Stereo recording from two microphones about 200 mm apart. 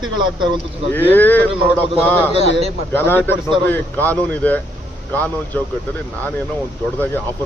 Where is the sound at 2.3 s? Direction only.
30° right (ahead or behind).